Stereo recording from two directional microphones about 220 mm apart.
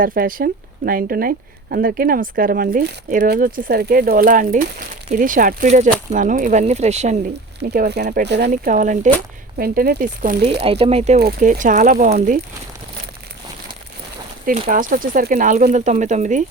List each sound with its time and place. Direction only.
0.0 s speech: 40° right (ahead or behind)
7.6 s speech: 50° right (ahead or behind)
8.4 s speech: 35° right (ahead or behind)
11.2 s speech: 40° right (ahead or behind)
14.7 s speech: 40° right (ahead or behind)